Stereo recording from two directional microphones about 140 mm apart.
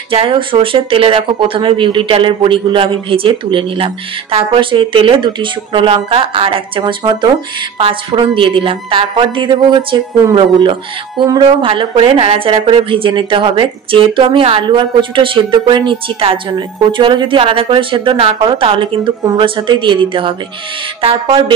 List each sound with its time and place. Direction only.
0.1 s speech: 40° right (ahead or behind)